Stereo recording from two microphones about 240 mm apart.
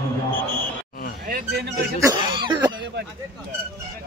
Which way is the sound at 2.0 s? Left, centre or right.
Centre.